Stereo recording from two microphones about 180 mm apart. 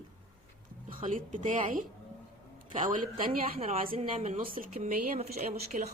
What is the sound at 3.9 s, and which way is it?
Speech, 35° right (ahead or behind).